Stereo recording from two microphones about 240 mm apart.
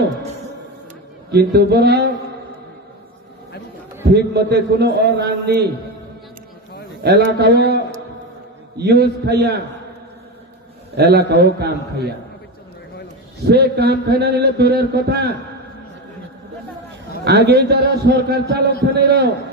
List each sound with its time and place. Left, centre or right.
1.3 s a man's voice: right
4.1 s a man's voice: right
7.0 s a man's voice: right
8.8 s a man's voice: right
10.9 s a man's voice: right
13.4 s speech: right
17.2 s a man's voice: right